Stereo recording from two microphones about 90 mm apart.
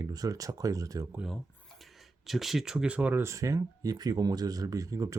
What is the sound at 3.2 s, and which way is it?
Speech, 35° right (ahead or behind).